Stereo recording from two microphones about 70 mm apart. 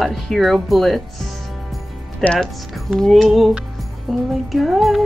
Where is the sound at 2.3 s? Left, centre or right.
Centre.